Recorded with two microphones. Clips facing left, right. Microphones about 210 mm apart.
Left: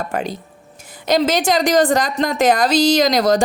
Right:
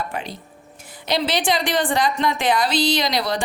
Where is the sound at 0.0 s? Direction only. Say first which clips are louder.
Left 6 dB; 45° left (ahead or behind).